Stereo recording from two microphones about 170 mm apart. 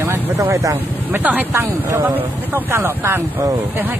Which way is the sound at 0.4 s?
20° right (ahead or behind).